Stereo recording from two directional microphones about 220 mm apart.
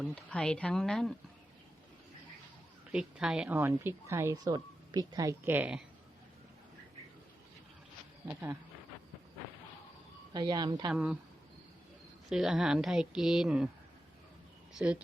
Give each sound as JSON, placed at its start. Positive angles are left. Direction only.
{"t": 0.0, "sound": "a woman's voice", "side_deg": 5}
{"t": 2.9, "sound": "a woman's voice", "side_deg": -5}
{"t": 8.3, "sound": "a woman's voice", "side_deg": -10}
{"t": 10.3, "sound": "a woman's voice", "side_deg": -20}
{"t": 10.9, "sound": "a woman's voice", "side_deg": -5}
{"t": 12.3, "sound": "a woman's voice", "side_deg": -5}
{"t": 14.8, "sound": "a woman's voice", "side_deg": -5}